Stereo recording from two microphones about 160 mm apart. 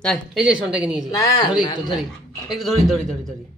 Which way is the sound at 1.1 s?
20° left (ahead or behind).